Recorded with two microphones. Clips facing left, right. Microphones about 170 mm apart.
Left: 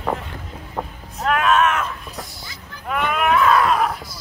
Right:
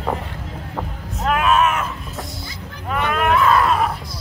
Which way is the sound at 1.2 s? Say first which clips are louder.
Even; 5° right (ahead or behind).